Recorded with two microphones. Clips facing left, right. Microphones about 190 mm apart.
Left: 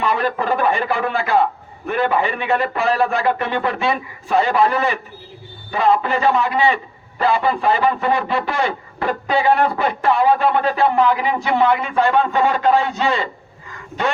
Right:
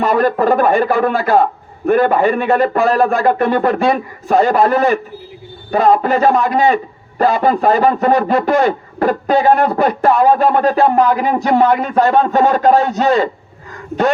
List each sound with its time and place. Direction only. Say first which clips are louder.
0.0 s a man's voice: right 7 dB; 45° right (ahead or behind)